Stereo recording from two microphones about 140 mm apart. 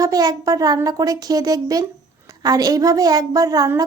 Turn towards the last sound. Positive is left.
turn(degrees=-25)  # may be behind; listen again after turning